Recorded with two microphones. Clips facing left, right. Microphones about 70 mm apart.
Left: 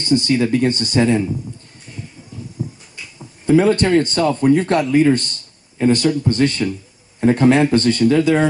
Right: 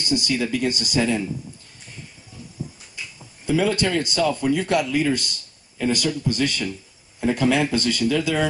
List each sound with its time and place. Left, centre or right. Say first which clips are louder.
0.0 s speech: left 7 dB; left
3.4 s speech: left 7 dB; left